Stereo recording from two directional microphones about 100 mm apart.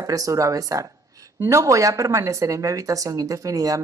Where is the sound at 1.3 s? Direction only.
20° right (ahead or behind).